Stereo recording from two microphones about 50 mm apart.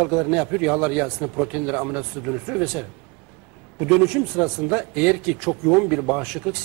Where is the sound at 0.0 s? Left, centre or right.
Centre.